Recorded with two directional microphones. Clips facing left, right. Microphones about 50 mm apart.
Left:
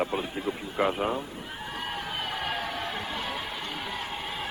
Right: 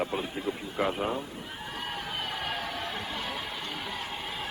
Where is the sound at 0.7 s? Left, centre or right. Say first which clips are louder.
Left 3 dB; left.